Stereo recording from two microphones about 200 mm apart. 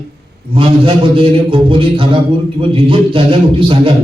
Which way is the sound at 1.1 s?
25° right (ahead or behind).